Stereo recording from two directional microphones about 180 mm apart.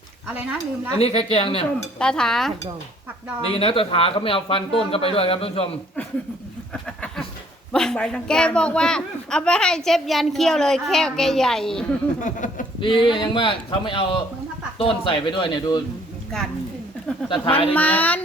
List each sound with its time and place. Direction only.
0.3 s speech: 10° right (ahead or behind)
0.6 s speech: 30° left (ahead or behind)
1.8 s a man's voice: 5° left (ahead or behind)
3.5 s speech: 30° left (ahead or behind)
6.8 s a sound: 5° left (ahead or behind)
7.7 s a man's voice: 5° left (ahead or behind)
12.2 s a sound: 45° left (ahead or behind)
12.8 s a man's voice: 25° left (ahead or behind)
16.3 s a man's voice: 5° left (ahead or behind)
17.2 s a man's voice: 30° left (ahead or behind)
17.7 s speech: 10° left (ahead or behind)